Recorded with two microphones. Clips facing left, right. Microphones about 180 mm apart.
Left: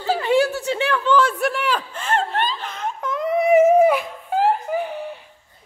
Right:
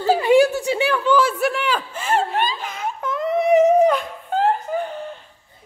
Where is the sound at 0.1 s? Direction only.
10° right (ahead or behind); by 5.3 s 10° left (ahead or behind).